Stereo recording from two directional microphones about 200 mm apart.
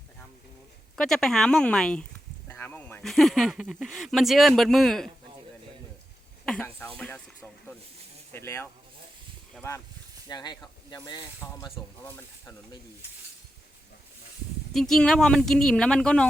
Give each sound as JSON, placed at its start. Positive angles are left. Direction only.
{"t": 0.9, "sound": "speech", "side_deg": 0}
{"t": 6.4, "sound": "speech", "side_deg": 5}
{"t": 10.2, "sound": "speech", "side_deg": 20}
{"t": 14.7, "sound": "speech", "side_deg": 0}